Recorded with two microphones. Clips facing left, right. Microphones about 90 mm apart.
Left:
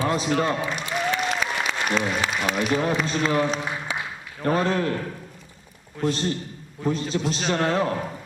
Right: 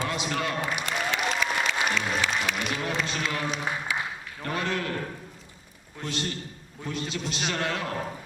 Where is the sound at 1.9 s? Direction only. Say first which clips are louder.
Left 3 dB; 40° left (ahead or behind).